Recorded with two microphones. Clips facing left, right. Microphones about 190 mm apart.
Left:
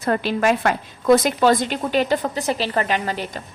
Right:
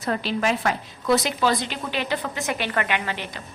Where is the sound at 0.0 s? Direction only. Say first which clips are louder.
Left 5 dB; 50° left (ahead or behind).